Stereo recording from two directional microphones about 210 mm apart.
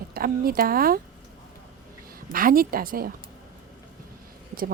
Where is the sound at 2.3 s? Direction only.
45° right (ahead or behind).